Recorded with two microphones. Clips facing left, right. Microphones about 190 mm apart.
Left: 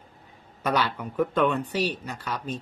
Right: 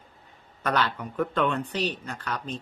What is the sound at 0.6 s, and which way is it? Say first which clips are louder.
Speech: left 1 dB; 10° left (ahead or behind).